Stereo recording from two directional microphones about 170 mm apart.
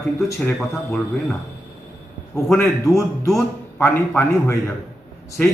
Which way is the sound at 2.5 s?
15° left (ahead or behind).